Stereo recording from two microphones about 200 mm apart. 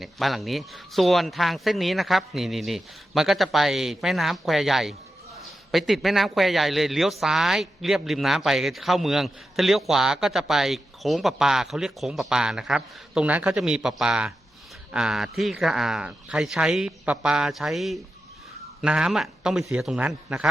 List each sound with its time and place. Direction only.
0.0 s a man's voice: centre (ahead or behind)